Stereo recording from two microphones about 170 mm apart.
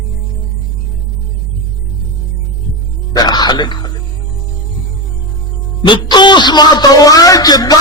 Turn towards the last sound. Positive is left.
turn(degrees=20)  # may be behind; listen again after turning